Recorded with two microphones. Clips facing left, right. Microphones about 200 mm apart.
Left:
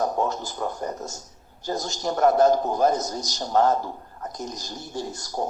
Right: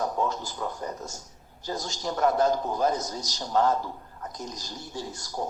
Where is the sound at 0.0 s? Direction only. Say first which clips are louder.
Left 3 dB; 45° left (ahead or behind).